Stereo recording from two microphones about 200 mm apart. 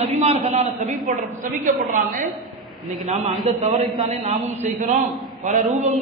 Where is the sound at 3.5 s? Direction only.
35° right (ahead or behind).